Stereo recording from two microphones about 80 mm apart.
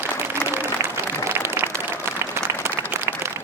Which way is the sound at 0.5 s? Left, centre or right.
Right.